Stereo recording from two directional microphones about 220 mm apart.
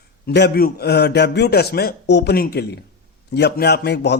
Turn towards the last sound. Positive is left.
turn(degrees=50)  # may be behind; listen again after turning